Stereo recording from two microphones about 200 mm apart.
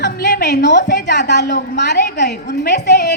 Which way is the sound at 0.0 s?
55° left (ahead or behind).